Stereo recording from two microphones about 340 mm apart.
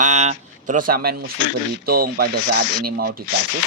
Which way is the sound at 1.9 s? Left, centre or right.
Right.